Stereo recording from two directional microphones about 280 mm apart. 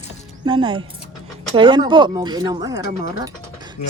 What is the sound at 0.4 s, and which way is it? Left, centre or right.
Speech, centre.